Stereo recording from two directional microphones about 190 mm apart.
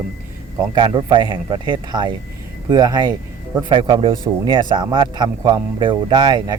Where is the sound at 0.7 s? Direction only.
25° right (ahead or behind).